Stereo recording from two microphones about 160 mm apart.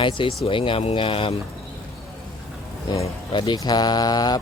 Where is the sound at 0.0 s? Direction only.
30° left (ahead or behind).